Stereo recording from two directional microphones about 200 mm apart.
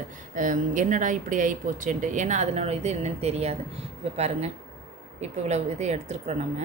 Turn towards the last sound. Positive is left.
turn(degrees=-35)  # may be behind; listen again after turning